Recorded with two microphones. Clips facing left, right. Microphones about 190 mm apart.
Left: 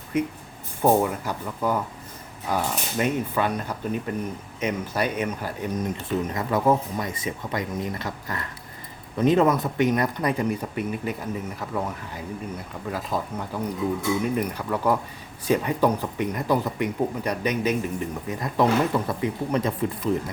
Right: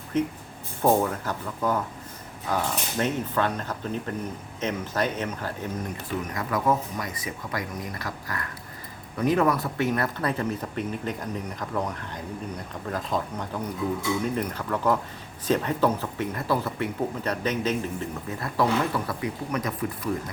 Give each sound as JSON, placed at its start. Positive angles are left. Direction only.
{"t": 0.1, "sound": "speech", "side_deg": 10}
{"t": 6.3, "sound": "speech", "side_deg": 25}